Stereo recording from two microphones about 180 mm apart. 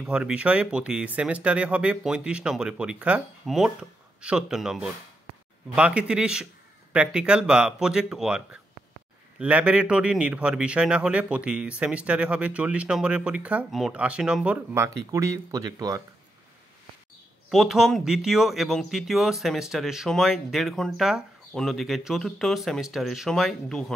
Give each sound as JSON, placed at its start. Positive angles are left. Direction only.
{"t": 0.0, "sound": "a man's voice", "side_deg": -5}
{"t": 17.5, "sound": "speech", "side_deg": 0}